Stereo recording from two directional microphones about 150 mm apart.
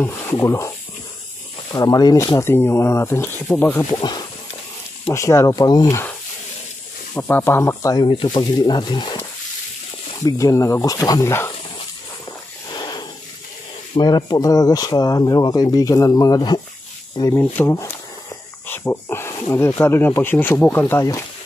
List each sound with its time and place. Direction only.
0.0 s speech: 15° left (ahead or behind)
4.0 s speech: 30° left (ahead or behind)
7.2 s speech: 15° left (ahead or behind); by 9.2 s 30° left (ahead or behind)
10.2 s speech: 20° left (ahead or behind)
12.7 s a sound: 30° left (ahead or behind)
13.9 s speech: 30° left (ahead or behind)